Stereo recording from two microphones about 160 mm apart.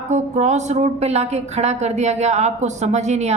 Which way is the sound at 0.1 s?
45° right (ahead or behind).